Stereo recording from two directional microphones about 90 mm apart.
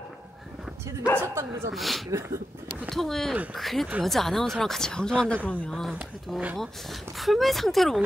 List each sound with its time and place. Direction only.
1.2 s speech: 30° right (ahead or behind)
1.7 s speech: centre (ahead or behind)
2.0 s speech: 35° right (ahead or behind)
2.9 s speech: 5° left (ahead or behind)
5.7 s speech: 5° left (ahead or behind)